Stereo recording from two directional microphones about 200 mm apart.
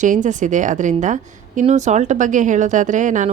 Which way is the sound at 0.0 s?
40° right (ahead or behind).